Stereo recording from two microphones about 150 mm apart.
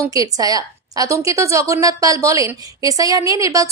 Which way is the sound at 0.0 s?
25° right (ahead or behind).